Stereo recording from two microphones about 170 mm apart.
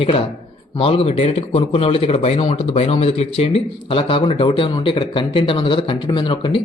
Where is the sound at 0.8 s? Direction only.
35° left (ahead or behind).